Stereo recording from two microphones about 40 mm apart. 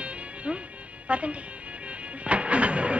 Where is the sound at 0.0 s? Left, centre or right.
Right.